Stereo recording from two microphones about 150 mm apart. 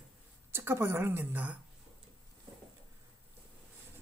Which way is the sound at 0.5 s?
15° right (ahead or behind).